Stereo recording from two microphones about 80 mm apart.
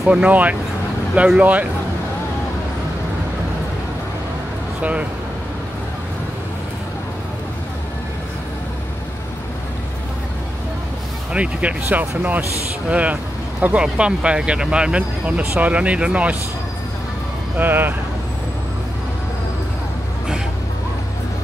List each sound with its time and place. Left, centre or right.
0.0 s speech: centre
11.3 s speech: centre
17.6 s speech: right